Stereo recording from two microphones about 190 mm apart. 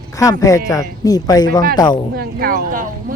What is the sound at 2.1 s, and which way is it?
Speech, 55° right (ahead or behind).